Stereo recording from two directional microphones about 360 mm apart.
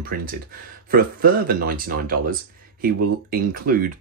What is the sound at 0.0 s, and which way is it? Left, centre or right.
Speech, right.